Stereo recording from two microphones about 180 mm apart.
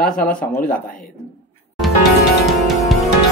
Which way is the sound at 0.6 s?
50° left (ahead or behind).